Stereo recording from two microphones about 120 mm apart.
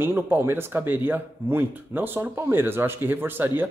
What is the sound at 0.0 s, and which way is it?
Speech, 20° right (ahead or behind).